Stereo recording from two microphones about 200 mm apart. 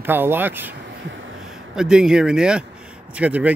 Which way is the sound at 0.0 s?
10° right (ahead or behind).